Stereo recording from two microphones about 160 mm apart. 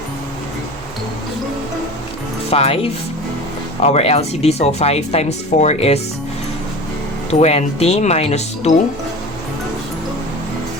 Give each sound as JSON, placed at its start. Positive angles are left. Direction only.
{"t": 2.5, "sound": "speech", "side_deg": 40}
{"t": 7.3, "sound": "speech", "side_deg": 40}